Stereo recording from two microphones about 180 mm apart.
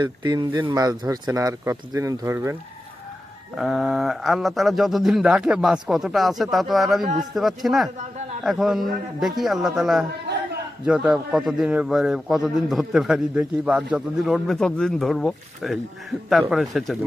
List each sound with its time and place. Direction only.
0.0 s speech: 25° right (ahead or behind)
3.5 s a man's voice: centre (ahead or behind)